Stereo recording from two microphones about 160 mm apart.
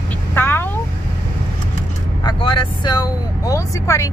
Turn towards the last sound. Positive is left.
turn(degrees=20)  # may be behind; listen again after turning